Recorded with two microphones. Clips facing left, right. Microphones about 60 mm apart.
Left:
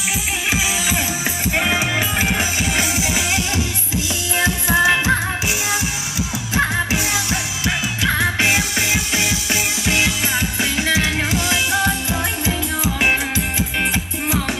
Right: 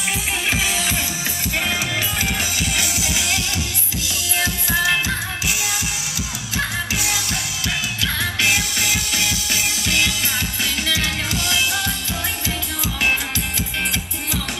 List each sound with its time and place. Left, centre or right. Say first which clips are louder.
1.5 s music: left 4 dB; left
4.4 s music: left 5 dB; left
6.5 s music: left 5 dB; left